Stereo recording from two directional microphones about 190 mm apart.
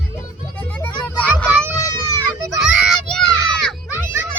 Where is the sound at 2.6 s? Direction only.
5° right (ahead or behind).